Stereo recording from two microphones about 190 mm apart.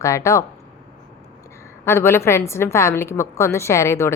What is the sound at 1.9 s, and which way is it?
A woman's voice, 15° left (ahead or behind).